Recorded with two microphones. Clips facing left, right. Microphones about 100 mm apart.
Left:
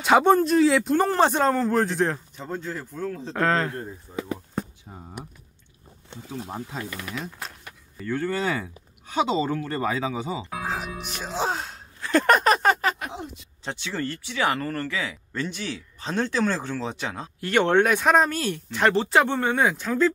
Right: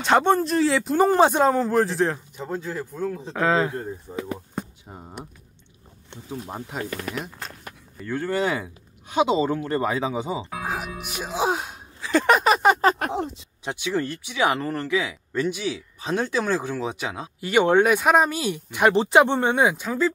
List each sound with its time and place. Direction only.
0.0 s speech: 5° left (ahead or behind)
4.1 s speech: 20° right (ahead or behind)
6.8 s speech: 50° right (ahead or behind)
8.1 s speech: 15° right (ahead or behind)
10.5 s speech: 5° right (ahead or behind)
12.0 s a sound: centre (ahead or behind)
13.0 s speech: 50° right (ahead or behind)
13.7 s speech: 10° right (ahead or behind)